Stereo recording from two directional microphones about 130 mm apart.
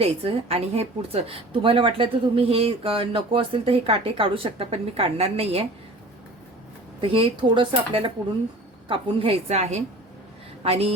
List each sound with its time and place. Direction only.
0.0 s a woman's voice: 50° right (ahead or behind)
7.0 s a woman's voice: 45° right (ahead or behind)